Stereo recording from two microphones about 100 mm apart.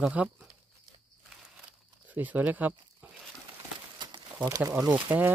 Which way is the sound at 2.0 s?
15° right (ahead or behind).